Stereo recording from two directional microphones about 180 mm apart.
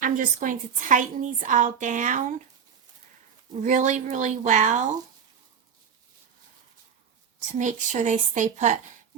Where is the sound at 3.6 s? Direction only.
45° right (ahead or behind).